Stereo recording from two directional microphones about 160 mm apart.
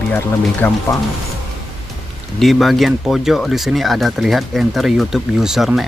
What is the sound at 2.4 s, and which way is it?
Speech, centre (ahead or behind).